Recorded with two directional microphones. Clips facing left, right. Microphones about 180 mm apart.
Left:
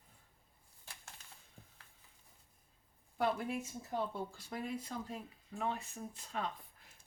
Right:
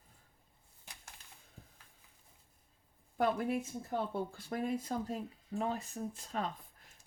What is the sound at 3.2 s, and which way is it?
Speech, 50° right (ahead or behind).